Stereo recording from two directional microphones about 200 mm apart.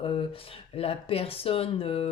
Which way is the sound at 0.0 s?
25° left (ahead or behind).